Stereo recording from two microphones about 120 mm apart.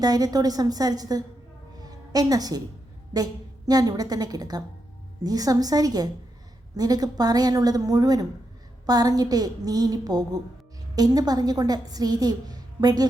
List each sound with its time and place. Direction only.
0.0 s a woman's voice: 35° right (ahead or behind)
1.8 s a sound: 30° right (ahead or behind)
3.1 s a woman's voice: 30° right (ahead or behind)